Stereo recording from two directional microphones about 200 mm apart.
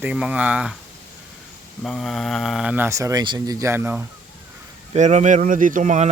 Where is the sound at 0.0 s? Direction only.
5° right (ahead or behind).